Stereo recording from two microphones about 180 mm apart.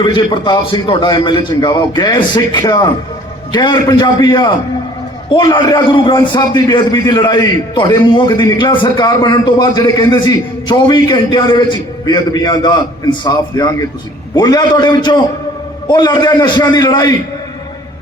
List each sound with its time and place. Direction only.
0.0 s a man's voice: 30° left (ahead or behind)